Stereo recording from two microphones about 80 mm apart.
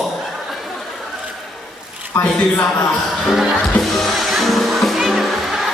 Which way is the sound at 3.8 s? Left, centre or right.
Centre.